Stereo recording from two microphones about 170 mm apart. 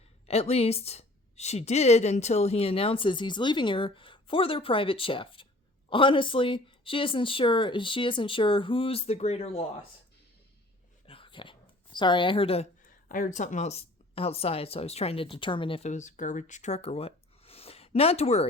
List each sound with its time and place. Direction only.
0.3 s a woman's voice: 35° left (ahead or behind)
11.0 s a sound: 30° left (ahead or behind)
12.8 s a woman's voice: 50° left (ahead or behind)